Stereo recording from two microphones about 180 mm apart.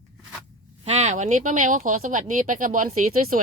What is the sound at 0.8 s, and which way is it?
Speech, 40° right (ahead or behind).